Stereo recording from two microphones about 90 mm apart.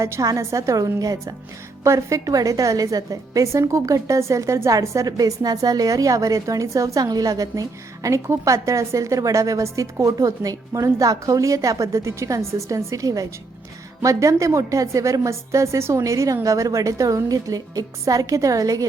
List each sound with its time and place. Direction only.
0.0 s a woman's voice: 35° right (ahead or behind)